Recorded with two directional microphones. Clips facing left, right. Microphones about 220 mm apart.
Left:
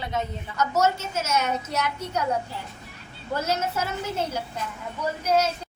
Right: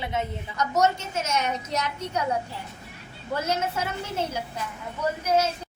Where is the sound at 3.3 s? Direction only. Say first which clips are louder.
Left 1 dB; 10° right (ahead or behind).